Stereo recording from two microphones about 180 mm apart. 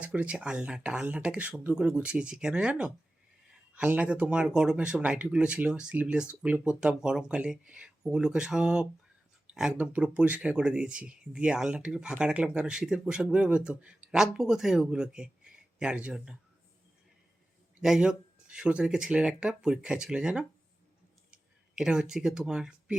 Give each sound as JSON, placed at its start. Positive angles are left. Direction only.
{"t": 0.0, "sound": "speech", "side_deg": -5}
{"t": 17.7, "sound": "speech", "side_deg": -5}
{"t": 21.8, "sound": "speech", "side_deg": -5}